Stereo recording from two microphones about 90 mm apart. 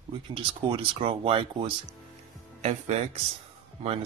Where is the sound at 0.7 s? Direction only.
75° right (ahead or behind).